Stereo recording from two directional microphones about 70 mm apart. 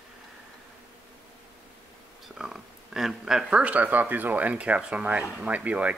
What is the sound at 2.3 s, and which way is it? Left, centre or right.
Speech, centre.